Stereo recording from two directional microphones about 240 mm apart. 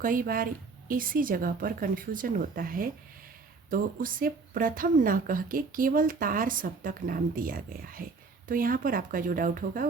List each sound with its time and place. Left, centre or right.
0.0 s speech: right